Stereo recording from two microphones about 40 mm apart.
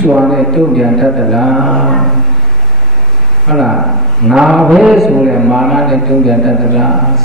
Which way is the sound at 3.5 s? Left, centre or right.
Centre.